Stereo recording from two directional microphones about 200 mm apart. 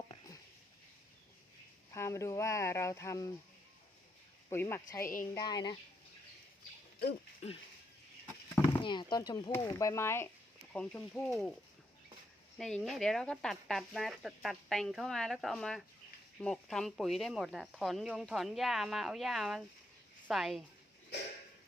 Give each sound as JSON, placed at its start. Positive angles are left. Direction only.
{"t": 1.9, "sound": "speech", "side_deg": 15}
{"t": 4.4, "sound": "speech", "side_deg": 10}
{"t": 8.8, "sound": "speech", "side_deg": 25}
{"t": 12.5, "sound": "speech", "side_deg": 0}
{"t": 21.1, "sound": "a sound", "side_deg": 60}